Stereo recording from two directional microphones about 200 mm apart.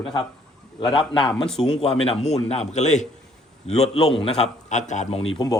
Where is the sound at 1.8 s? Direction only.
30° left (ahead or behind).